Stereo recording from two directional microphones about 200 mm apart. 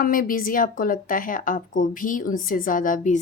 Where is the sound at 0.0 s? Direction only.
45° left (ahead or behind).